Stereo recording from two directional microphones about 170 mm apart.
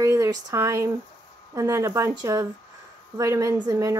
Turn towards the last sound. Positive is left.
turn(degrees=-20)  # may be behind; listen again after turning